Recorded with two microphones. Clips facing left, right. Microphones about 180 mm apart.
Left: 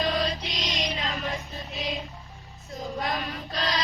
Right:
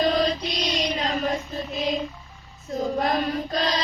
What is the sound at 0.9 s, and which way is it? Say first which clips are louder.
Child singing: right 6 dB; 40° right (ahead or behind).